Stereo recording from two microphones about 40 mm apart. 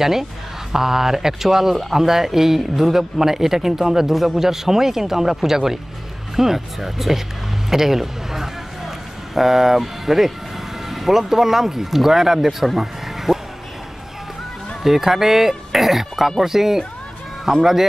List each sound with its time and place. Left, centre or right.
0.0 s speech: centre
14.8 s speech: centre